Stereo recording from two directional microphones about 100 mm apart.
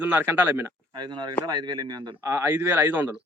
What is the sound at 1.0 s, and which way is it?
Speech, 50° right (ahead or behind).